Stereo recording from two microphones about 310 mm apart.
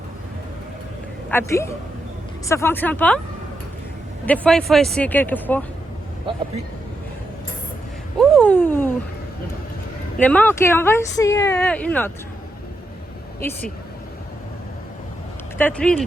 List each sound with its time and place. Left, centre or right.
1.3 s speech: centre
4.3 s speech: centre
8.2 s a sound: centre
10.2 s speech: centre
15.5 s speech: centre